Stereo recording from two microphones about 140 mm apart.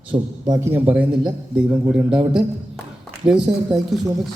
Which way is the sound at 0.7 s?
10° right (ahead or behind).